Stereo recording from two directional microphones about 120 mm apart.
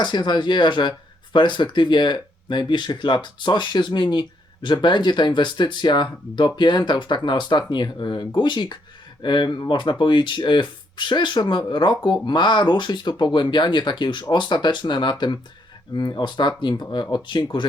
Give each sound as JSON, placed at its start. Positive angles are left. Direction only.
{"t": 0.0, "sound": "speech", "side_deg": 40}